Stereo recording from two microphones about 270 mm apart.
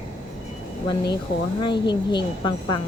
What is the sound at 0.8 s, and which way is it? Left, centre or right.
Speech, centre.